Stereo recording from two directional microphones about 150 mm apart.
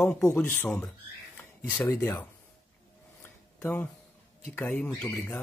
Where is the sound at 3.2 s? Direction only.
10° left (ahead or behind).